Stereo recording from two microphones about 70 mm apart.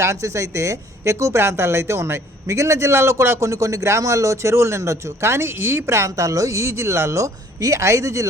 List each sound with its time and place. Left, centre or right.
0.0 s speech: right
6.1 s speech: right